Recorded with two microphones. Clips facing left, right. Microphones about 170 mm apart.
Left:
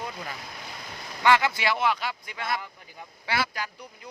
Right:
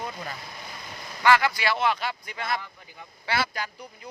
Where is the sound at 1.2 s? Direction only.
20° left (ahead or behind).